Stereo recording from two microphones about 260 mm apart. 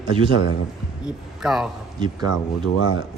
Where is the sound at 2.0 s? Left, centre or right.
Centre.